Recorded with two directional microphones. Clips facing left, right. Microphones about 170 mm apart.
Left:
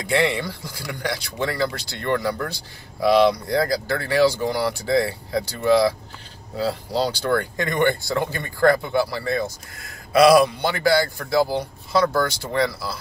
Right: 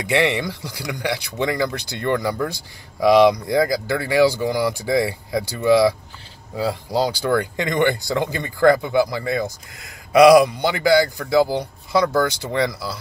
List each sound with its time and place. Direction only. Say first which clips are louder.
0.7 s speech: right 3 dB; 15° right (ahead or behind)